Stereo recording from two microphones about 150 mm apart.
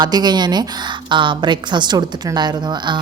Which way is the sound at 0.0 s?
30° right (ahead or behind).